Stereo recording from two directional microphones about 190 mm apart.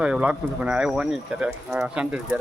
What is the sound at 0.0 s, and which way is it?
Speech, 5° right (ahead or behind).